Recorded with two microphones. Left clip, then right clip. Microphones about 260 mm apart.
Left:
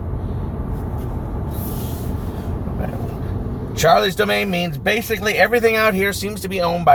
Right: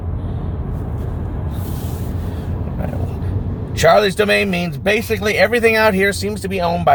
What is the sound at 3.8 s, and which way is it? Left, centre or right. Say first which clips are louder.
Speech: right 2 dB; centre.